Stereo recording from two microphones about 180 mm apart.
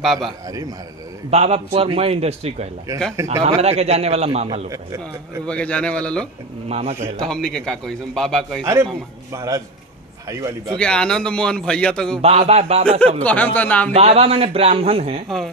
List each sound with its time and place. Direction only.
0.0 s a man's voice: centre (ahead or behind)
0.5 s a man's voice: 20° right (ahead or behind)
1.3 s a man's voice: 35° right (ahead or behind)
4.6 s a man's voice: 20° right (ahead or behind)
5.5 s a man's voice: 5° left (ahead or behind)
6.7 s a man's voice: 35° right (ahead or behind)
7.2 s a man's voice: 5° left (ahead or behind)
9.3 s a man's voice: 15° right (ahead or behind)
10.8 s a man's voice: 5° left (ahead or behind)
12.2 s a man's voice: 35° right (ahead or behind)
13.2 s a man's voice: 10° left (ahead or behind)
13.9 s a man's voice: 35° right (ahead or behind)
15.2 s a man's voice: centre (ahead or behind)